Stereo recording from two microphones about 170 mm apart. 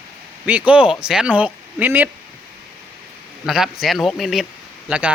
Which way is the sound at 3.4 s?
Centre (ahead or behind).